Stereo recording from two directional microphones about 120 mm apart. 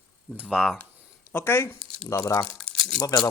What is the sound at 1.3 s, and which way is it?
Speech, 20° left (ahead or behind).